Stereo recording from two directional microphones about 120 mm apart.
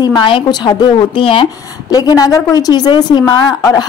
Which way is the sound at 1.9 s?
30° left (ahead or behind).